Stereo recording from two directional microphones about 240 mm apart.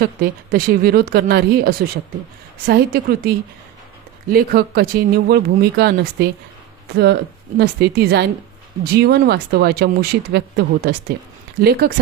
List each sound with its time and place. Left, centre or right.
0.0 s speech: right